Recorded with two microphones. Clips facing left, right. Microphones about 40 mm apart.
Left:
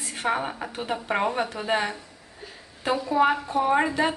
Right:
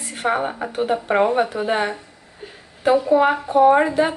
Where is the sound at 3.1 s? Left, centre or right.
Centre.